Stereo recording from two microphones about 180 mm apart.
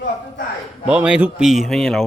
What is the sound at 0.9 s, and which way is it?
Speech, 5° right (ahead or behind).